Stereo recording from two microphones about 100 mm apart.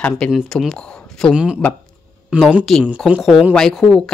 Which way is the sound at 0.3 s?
Centre (ahead or behind).